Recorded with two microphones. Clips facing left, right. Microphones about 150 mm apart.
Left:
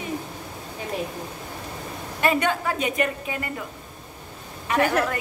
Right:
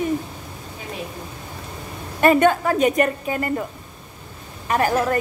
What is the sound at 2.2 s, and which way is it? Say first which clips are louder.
A woman's voice: right 7 dB; 50° right (ahead or behind).